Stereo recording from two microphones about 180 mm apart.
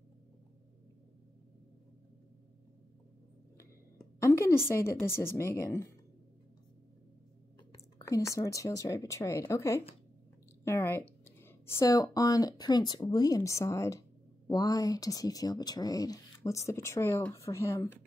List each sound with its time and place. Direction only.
3.5 s a woman's voice: 15° left (ahead or behind)
8.0 s speech: 15° left (ahead or behind)